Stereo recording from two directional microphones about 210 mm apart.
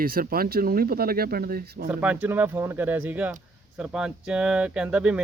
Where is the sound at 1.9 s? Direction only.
5° right (ahead or behind).